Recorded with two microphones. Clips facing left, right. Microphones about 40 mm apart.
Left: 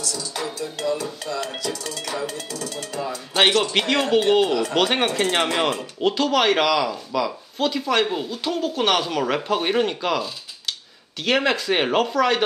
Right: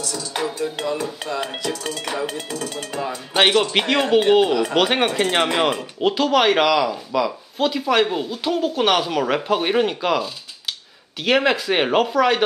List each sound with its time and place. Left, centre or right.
0.6 s speech: right
3.3 s speech: centre